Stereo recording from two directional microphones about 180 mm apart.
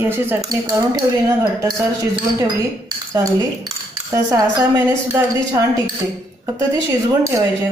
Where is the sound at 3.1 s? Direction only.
15° right (ahead or behind).